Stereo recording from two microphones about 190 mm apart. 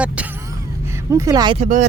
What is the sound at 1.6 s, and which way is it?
Speech, 40° right (ahead or behind).